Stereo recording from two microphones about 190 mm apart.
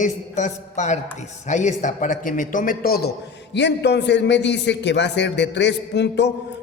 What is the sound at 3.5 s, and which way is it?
A man's voice, 65° left (ahead or behind).